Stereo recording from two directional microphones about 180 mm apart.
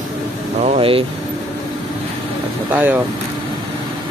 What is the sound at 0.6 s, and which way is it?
Speech, 35° right (ahead or behind).